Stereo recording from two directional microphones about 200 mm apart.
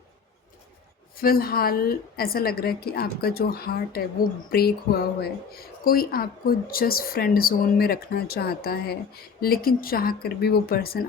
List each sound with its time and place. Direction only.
1.1 s speech: 45° left (ahead or behind)